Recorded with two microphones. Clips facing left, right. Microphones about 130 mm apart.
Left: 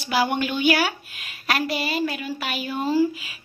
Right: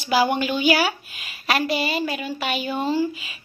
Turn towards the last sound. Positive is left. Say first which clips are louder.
# left 2 dB
turn(degrees=0)  # may be behind; listen again after turning